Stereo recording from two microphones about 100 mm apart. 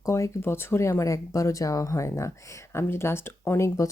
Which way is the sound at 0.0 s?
30° left (ahead or behind).